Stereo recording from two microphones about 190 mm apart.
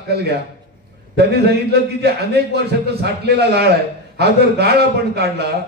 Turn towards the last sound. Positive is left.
turn(degrees=-55)  # may be behind; listen again after turning